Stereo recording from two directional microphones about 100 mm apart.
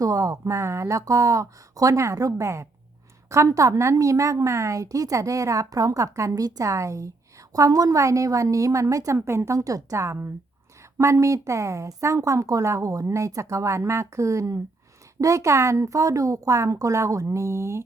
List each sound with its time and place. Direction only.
0.0 s a woman's voice: 35° right (ahead or behind)